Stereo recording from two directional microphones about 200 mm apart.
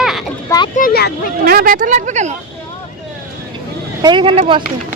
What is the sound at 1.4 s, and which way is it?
Speech, 45° right (ahead or behind).